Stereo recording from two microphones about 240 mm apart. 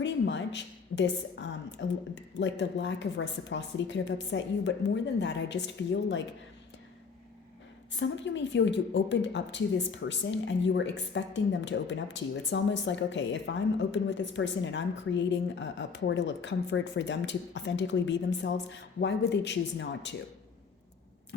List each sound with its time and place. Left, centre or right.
0.0 s a woman's voice: left
7.9 s a woman's voice: left